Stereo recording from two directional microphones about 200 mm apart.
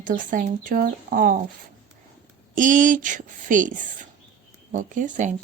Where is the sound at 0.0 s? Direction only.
40° right (ahead or behind).